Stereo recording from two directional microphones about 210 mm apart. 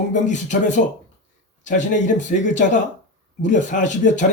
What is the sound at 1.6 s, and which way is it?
Speech, 35° left (ahead or behind).